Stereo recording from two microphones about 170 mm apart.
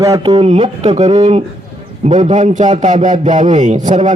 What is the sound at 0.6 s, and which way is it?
A man's voice, 40° right (ahead or behind).